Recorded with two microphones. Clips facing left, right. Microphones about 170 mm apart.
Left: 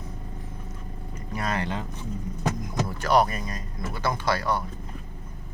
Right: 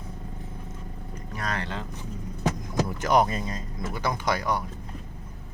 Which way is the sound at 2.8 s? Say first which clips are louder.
Even; 15° right (ahead or behind).